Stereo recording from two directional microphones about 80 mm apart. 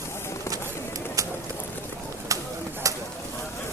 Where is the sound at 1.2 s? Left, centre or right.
Right.